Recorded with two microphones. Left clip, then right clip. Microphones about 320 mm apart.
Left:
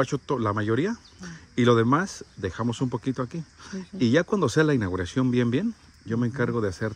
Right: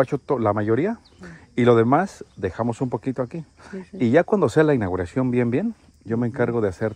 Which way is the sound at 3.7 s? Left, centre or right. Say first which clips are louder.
Right 5 dB; centre.